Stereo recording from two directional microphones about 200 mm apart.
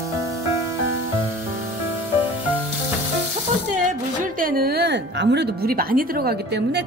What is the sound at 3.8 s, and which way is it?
A woman's voice, 40° right (ahead or behind).